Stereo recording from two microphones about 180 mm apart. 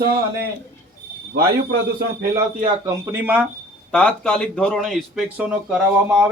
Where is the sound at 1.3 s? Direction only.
60° right (ahead or behind).